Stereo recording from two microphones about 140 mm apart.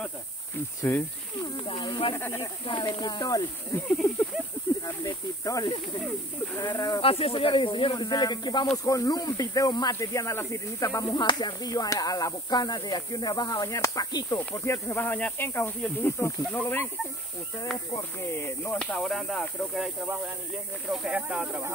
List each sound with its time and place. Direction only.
0.9 s speech: 15° left (ahead or behind)
1.7 s speech: 35° left (ahead or behind)
2.1 s speech: 15° left (ahead or behind)
2.6 s speech: 35° left (ahead or behind)
3.9 s speech: 10° left (ahead or behind)
4.8 s speech: 25° left (ahead or behind)
7.0 s speech: 40° left (ahead or behind); by 16.8 s 15° left (ahead or behind)
18.4 s speech: 15° left (ahead or behind); by 21.7 s 10° right (ahead or behind)